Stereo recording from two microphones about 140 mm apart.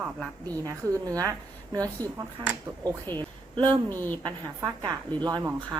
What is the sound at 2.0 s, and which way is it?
Speech, 15° left (ahead or behind).